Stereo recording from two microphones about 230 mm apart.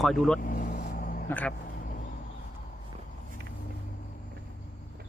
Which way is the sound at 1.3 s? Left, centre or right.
Centre.